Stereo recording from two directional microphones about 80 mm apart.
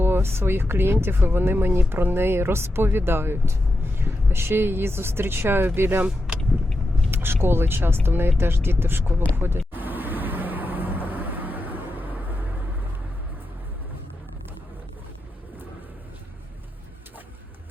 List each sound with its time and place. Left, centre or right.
0.0 s speech: right
6.1 s speech: centre
7.1 s a sound: right
7.4 s speech: right
9.3 s vehicle: right